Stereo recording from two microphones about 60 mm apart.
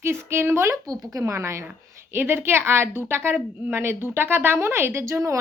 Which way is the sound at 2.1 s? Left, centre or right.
Right.